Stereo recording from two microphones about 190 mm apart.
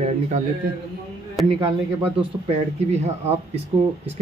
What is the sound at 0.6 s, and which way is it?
Speech, 50° right (ahead or behind).